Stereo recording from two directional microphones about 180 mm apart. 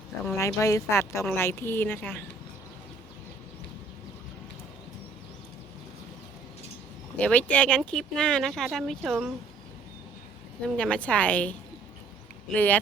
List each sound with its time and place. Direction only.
0.3 s a woman's voice: 15° left (ahead or behind)
7.2 s speech: 5° left (ahead or behind)
10.8 s a woman's voice: 5° left (ahead or behind)
12.5 s a woman's voice: 10° left (ahead or behind)